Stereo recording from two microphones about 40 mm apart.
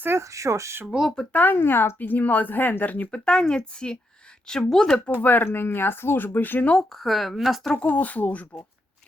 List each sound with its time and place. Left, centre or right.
0.1 s speech: right
0.9 s speech: right
1.3 s speech: left
1.5 s speech: left
2.0 s speech: left
3.1 s speech: left
5.2 s speech: left
6.9 s a woman's voice: centre
7.8 s speech: left